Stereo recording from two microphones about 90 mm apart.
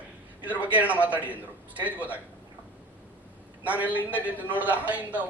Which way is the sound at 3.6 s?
15° right (ahead or behind).